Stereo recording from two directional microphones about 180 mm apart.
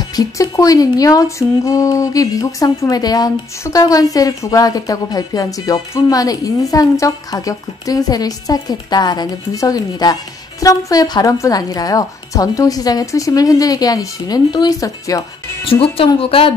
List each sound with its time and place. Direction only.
0.1 s speech: 20° left (ahead or behind)
15.6 s speech: 30° left (ahead or behind)